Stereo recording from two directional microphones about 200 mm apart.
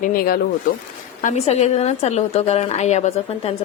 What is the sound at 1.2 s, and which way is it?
A woman's voice, 35° left (ahead or behind).